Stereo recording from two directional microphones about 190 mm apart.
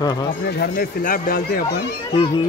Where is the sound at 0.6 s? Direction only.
50° left (ahead or behind).